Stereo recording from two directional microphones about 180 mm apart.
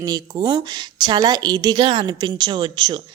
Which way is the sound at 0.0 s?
20° right (ahead or behind).